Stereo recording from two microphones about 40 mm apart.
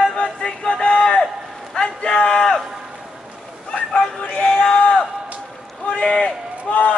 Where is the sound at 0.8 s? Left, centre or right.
Centre.